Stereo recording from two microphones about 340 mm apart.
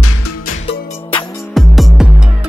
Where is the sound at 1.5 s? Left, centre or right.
Centre.